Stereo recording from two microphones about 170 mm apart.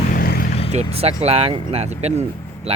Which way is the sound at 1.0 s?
35° right (ahead or behind).